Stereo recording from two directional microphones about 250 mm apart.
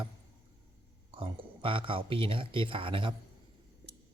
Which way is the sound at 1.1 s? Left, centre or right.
Right.